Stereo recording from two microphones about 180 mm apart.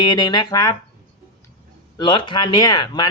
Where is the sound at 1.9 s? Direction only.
25° left (ahead or behind).